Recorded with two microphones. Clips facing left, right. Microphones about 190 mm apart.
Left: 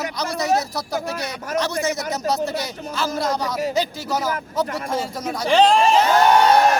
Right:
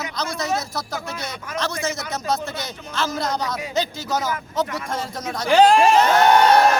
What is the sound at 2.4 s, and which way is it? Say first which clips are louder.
Speech: left 6 dB; 35° left (ahead or behind).